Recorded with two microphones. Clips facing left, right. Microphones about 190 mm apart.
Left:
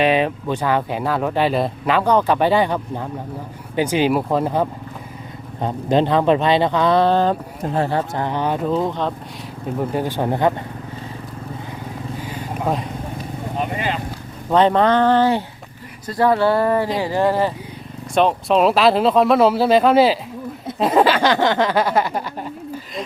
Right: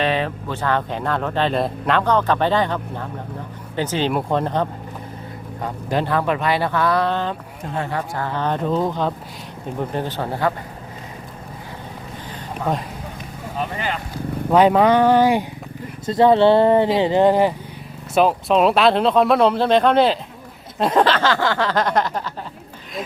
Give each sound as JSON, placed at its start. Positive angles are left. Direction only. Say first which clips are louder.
{"t": 0.0, "sound": "speech", "louder": "left 4 dB", "side_deg": 15}
{"t": 5.6, "sound": "speech", "louder": "left 5 dB", "side_deg": 20}
{"t": 9.9, "sound": "speech", "louder": "left 4 dB", "side_deg": 10}
{"t": 13.6, "sound": "a sound", "louder": "left 2 dB", "side_deg": 20}
{"t": 14.5, "sound": "speech", "louder": "right 1 dB", "side_deg": -10}
{"t": 16.0, "sound": "speech", "louder": "right 3 dB", "side_deg": -25}
{"t": 18.1, "sound": "speech", "louder": "even", "side_deg": -5}